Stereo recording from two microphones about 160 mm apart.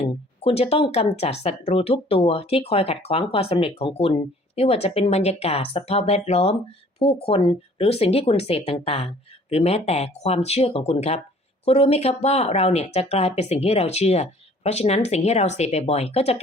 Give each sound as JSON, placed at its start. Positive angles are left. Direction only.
{"t": 0.0, "sound": "speech", "side_deg": 40}